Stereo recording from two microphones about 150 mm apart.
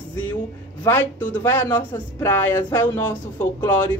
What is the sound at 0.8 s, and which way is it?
A man's voice, 10° left (ahead or behind).